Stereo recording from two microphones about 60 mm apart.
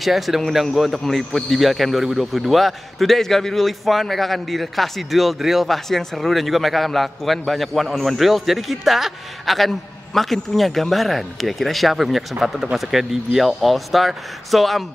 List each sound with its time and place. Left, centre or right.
0.0 s speech: centre